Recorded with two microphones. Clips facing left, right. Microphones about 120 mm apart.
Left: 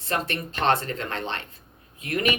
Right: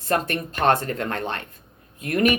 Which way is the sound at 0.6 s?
50° right (ahead or behind).